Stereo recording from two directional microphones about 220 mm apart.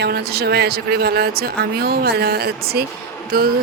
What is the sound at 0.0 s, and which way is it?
Speech, 45° right (ahead or behind).